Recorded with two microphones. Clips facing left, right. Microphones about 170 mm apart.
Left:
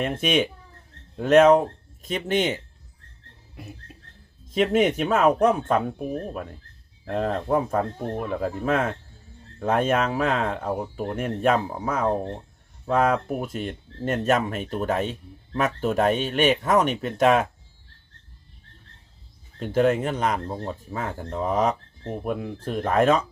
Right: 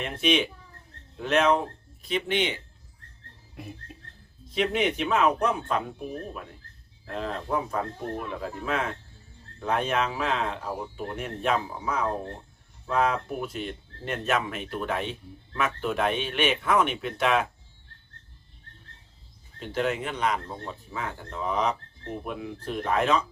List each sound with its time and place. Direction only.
0.0 s speech: 45° left (ahead or behind)
3.5 s a sound: centre (ahead or behind)
4.4 s speech: 45° left (ahead or behind)
19.5 s speech: 45° left (ahead or behind)